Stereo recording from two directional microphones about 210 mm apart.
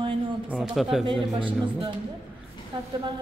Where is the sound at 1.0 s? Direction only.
25° right (ahead or behind).